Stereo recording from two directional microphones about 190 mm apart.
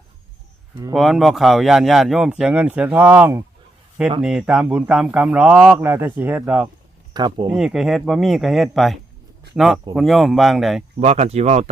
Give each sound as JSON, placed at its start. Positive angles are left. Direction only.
{"t": 0.9, "sound": "speech", "side_deg": 0}
{"t": 7.1, "sound": "speech", "side_deg": -20}
{"t": 7.4, "sound": "speech", "side_deg": -5}
{"t": 11.0, "sound": "speech", "side_deg": -35}